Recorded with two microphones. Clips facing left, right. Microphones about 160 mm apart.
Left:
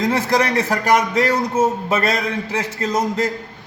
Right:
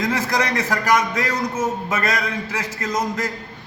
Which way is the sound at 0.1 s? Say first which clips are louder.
Left 4 dB; 30° left (ahead or behind).